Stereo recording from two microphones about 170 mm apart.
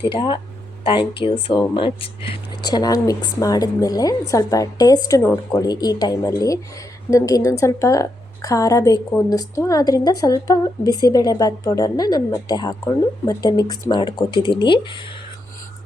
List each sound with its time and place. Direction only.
0.1 s speech: 30° left (ahead or behind)